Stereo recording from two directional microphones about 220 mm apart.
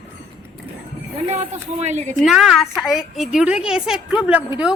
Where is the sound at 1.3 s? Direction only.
30° right (ahead or behind).